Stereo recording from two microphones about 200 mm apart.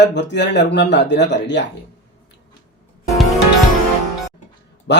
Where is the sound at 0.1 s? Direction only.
60° left (ahead or behind).